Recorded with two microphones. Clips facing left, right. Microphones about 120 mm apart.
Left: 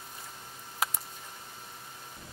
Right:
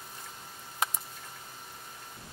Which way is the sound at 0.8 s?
Centre (ahead or behind).